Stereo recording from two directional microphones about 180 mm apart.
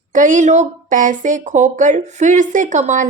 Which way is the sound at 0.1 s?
45° right (ahead or behind).